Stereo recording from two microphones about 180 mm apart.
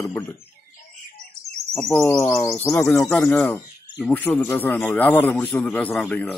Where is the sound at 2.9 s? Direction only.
Centre (ahead or behind).